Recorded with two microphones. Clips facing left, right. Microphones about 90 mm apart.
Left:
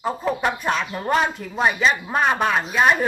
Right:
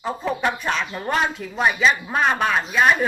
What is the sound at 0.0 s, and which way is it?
Speech, 5° left (ahead or behind).